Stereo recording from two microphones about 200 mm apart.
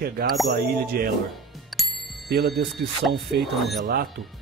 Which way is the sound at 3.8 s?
55° right (ahead or behind).